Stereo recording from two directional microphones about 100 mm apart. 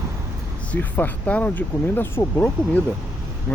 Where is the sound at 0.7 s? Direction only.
15° left (ahead or behind).